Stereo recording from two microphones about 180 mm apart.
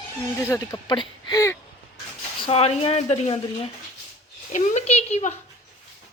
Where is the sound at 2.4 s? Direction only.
30° left (ahead or behind).